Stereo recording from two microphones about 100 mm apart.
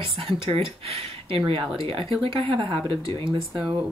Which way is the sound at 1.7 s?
65° right (ahead or behind).